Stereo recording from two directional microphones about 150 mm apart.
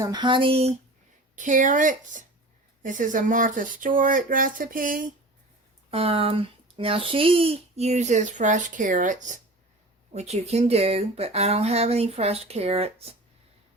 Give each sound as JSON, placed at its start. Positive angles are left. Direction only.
{"t": 0.0, "sound": "speech", "side_deg": -30}
{"t": 1.4, "sound": "speech", "side_deg": -55}
{"t": 5.9, "sound": "a child's voice", "side_deg": -40}
{"t": 10.2, "sound": "a child's voice", "side_deg": -45}